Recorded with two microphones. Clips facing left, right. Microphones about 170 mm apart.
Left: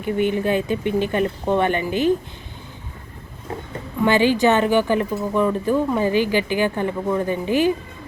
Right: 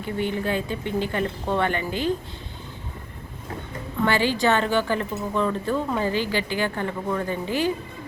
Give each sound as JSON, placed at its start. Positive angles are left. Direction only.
{"t": 0.0, "sound": "speech", "side_deg": 20}
{"t": 4.0, "sound": "a woman's voice", "side_deg": 15}